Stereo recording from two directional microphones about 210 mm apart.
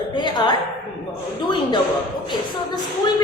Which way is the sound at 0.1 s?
20° left (ahead or behind).